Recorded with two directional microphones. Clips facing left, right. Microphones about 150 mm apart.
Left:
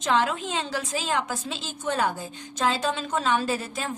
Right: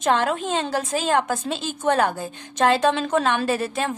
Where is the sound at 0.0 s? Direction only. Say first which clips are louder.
Right 3 dB; 50° right (ahead or behind).